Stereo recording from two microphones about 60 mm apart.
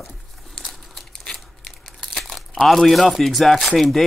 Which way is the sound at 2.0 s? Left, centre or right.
Centre.